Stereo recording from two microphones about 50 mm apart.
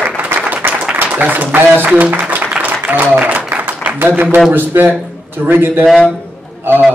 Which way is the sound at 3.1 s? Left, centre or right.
Right.